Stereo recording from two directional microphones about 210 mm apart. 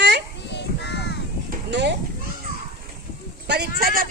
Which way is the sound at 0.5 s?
55° left (ahead or behind).